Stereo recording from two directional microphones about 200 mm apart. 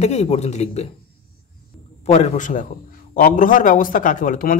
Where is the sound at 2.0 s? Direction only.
35° left (ahead or behind).